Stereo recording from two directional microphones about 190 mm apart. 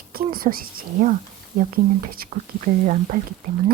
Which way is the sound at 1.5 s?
45° right (ahead or behind).